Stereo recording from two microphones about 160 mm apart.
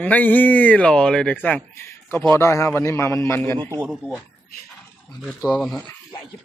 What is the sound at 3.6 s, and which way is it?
Speech, 15° right (ahead or behind).